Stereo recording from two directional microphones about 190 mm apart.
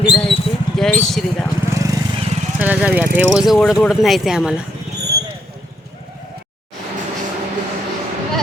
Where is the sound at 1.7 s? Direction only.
15° right (ahead or behind).